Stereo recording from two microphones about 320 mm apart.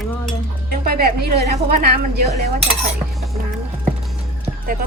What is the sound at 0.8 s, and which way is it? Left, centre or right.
A woman's voice, right.